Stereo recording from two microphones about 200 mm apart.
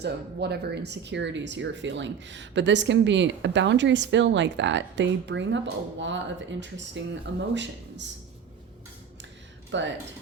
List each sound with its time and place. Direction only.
0.0 s speech: 55° right (ahead or behind)
9.7 s speech: 65° right (ahead or behind)